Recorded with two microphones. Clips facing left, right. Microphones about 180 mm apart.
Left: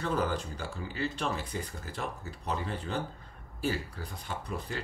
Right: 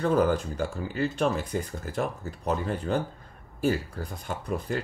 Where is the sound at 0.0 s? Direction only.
50° right (ahead or behind).